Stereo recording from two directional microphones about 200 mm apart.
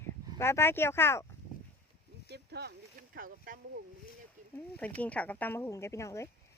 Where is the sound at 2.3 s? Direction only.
55° right (ahead or behind).